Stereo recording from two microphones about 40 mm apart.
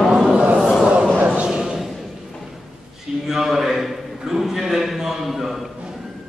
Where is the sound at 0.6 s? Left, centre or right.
Centre.